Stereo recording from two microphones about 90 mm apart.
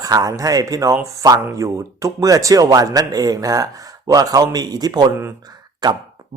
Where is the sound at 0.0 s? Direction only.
40° right (ahead or behind).